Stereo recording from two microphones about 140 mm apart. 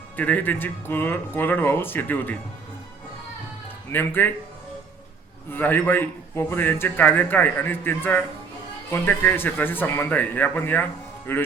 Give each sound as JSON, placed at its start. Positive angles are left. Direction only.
{"t": 0.2, "sound": "a man's voice", "side_deg": 15}
{"t": 3.9, "sound": "a man's voice", "side_deg": 15}
{"t": 5.5, "sound": "a man's voice", "side_deg": 15}